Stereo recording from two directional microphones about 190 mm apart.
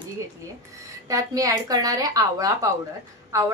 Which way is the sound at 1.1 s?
20° right (ahead or behind).